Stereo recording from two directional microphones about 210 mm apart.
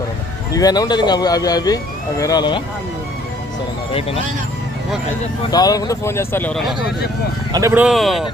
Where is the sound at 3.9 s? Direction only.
25° left (ahead or behind).